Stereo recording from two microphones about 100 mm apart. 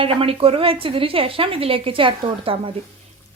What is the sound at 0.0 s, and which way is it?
A woman's voice, 70° right (ahead or behind).